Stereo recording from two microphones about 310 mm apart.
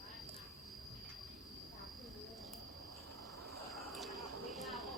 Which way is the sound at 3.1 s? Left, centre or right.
Right.